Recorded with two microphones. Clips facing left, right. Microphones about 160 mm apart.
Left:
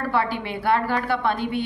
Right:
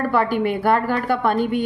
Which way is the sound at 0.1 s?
50° right (ahead or behind).